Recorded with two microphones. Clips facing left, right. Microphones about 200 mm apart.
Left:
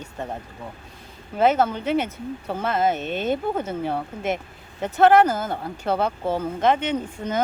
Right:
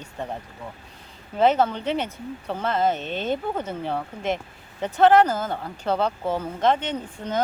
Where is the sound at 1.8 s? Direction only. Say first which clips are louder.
Left 3 dB; 5° left (ahead or behind).